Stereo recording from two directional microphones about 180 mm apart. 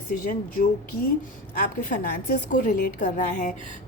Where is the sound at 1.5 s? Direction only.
50° left (ahead or behind).